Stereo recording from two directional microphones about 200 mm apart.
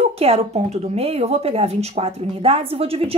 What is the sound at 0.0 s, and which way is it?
A woman's voice, 30° right (ahead or behind).